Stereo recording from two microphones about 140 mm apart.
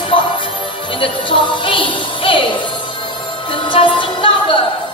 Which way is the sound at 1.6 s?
35° left (ahead or behind).